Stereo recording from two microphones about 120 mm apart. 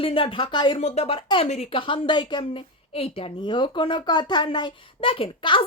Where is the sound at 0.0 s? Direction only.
50° left (ahead or behind).